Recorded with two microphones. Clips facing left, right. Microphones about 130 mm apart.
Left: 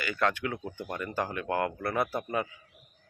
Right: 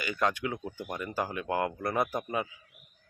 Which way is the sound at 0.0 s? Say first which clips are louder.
Left 1 dB; 15° right (ahead or behind).